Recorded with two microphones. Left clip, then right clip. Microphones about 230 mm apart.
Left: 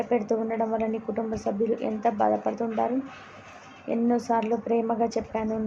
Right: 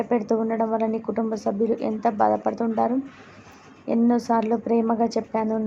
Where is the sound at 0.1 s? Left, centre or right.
Centre.